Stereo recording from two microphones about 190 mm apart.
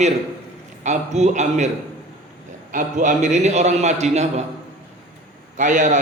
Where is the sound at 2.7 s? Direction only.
45° right (ahead or behind).